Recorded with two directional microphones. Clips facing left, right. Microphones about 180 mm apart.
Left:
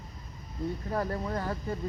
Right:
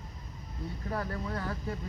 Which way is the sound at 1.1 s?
35° left (ahead or behind).